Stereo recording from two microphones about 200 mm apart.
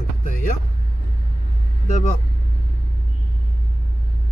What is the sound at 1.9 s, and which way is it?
Speech, 35° left (ahead or behind).